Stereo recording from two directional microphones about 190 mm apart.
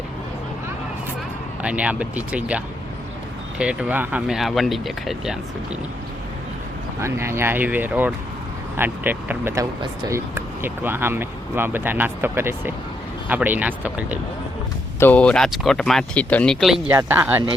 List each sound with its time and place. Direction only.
1.6 s speech: 5° right (ahead or behind)
7.0 s speech: 15° right (ahead or behind)
9.8 s speech: 25° right (ahead or behind)
10.3 s speech: 10° right (ahead or behind)
14.9 s speech: 10° left (ahead or behind); by 17.4 s 10° right (ahead or behind)